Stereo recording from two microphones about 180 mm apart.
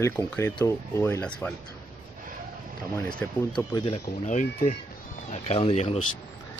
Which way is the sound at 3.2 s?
15° left (ahead or behind).